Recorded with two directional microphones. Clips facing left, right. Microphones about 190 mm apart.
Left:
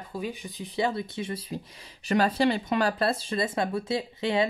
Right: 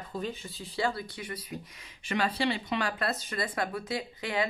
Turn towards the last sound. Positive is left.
turn(degrees=25)  # may be behind; listen again after turning